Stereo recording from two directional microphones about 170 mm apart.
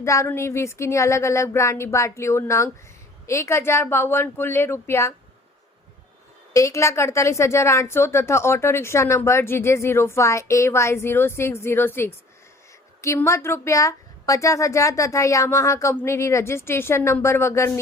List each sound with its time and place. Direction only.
0.0 s a woman's voice: 15° left (ahead or behind)
6.5 s a woman's voice: 20° left (ahead or behind)